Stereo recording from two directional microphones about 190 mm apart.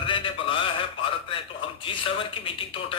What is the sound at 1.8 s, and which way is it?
Speech, 30° left (ahead or behind).